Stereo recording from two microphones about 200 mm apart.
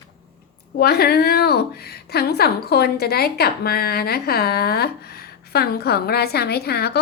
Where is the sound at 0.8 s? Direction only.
50° left (ahead or behind).